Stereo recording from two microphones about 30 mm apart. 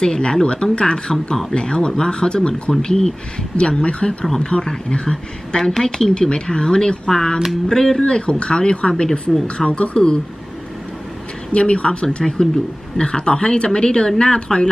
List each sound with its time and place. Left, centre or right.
0.0 s speech: left
3.6 s speech: left; by 8.0 s centre
8.0 s speech: left
9.3 s speech: centre
9.6 s speech: left
11.5 s speech: left